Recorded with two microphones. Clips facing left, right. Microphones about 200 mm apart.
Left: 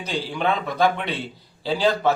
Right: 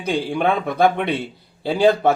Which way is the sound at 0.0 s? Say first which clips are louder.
Right 5 dB; 55° right (ahead or behind).